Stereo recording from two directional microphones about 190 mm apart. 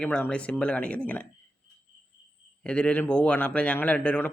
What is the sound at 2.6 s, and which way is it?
Speech, 5° left (ahead or behind).